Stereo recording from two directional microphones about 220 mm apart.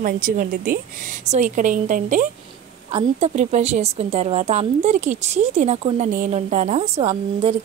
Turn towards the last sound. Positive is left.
turn(degrees=-30)  # may be behind; listen again after turning